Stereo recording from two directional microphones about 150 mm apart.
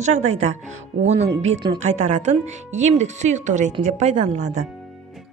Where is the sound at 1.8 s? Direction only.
50° right (ahead or behind).